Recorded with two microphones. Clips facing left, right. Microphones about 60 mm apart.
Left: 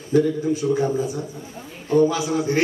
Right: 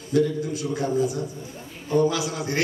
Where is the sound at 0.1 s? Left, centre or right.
Left.